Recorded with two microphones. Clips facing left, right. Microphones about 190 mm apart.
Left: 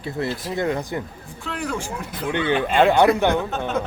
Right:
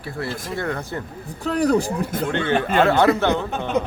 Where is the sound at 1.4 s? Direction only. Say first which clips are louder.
Right 9 dB; 40° right (ahead or behind).